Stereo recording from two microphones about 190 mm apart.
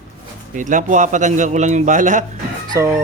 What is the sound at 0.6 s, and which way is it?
A man's voice, 40° right (ahead or behind).